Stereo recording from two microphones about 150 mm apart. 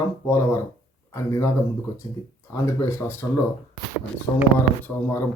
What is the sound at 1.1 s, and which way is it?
Speech, 20° left (ahead or behind).